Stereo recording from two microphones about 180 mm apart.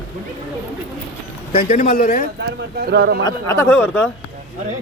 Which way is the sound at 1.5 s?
55° left (ahead or behind).